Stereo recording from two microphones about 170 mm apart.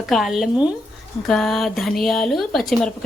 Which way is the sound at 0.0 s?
Centre (ahead or behind).